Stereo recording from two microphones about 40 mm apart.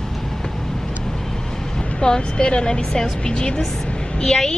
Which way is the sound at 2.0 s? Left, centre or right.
Centre.